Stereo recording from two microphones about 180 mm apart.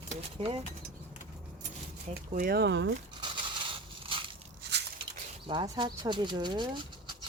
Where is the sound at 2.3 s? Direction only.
55° right (ahead or behind); by 2.9 s 80° right.